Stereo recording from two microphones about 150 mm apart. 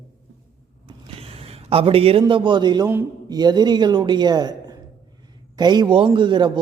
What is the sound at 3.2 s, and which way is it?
A man's voice, 25° right (ahead or behind).